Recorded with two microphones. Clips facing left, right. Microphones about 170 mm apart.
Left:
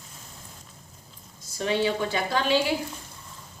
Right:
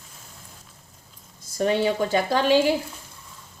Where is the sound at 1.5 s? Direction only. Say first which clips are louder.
Right 4 dB; 45° right (ahead or behind).